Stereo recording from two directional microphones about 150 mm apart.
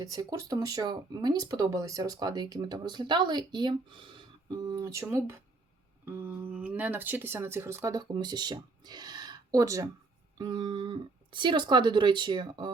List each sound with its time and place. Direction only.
0.0 s speech: 25° right (ahead or behind)